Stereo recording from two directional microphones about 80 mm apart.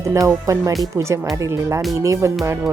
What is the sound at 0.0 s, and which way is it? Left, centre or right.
Speech, right.